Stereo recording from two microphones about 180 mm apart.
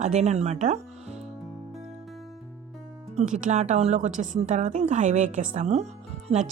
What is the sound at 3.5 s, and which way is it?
A woman's voice, 40° right (ahead or behind).